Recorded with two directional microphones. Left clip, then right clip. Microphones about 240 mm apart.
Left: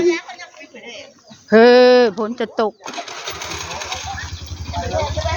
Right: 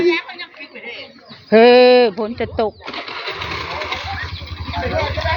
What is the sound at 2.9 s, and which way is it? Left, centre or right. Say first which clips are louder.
Sewing machine: right 2 dB; left.